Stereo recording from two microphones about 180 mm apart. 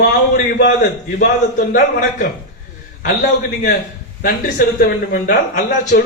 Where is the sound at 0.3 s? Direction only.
45° left (ahead or behind).